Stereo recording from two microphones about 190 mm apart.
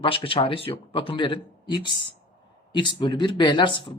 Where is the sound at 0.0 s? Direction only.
25° left (ahead or behind).